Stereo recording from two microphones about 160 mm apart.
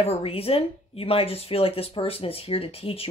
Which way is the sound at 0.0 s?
40° left (ahead or behind).